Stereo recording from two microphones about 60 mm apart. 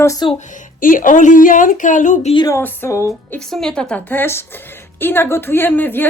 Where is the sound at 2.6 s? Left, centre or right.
Left.